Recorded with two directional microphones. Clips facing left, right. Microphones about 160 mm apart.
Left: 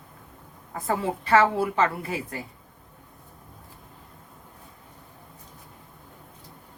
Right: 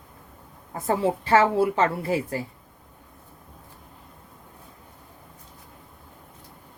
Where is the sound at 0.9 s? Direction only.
30° right (ahead or behind).